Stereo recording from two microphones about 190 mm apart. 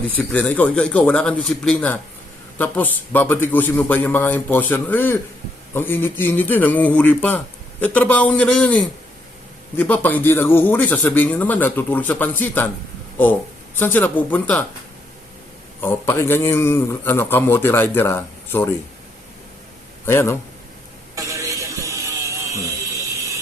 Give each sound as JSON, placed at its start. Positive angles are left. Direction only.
{"t": 0.2, "sound": "a man's voice", "side_deg": 5}
{"t": 13.7, "sound": "a man's voice", "side_deg": 10}
{"t": 15.8, "sound": "a man's voice", "side_deg": 10}
{"t": 20.1, "sound": "a man's voice", "side_deg": 10}
{"t": 21.2, "sound": "a sound", "side_deg": -15}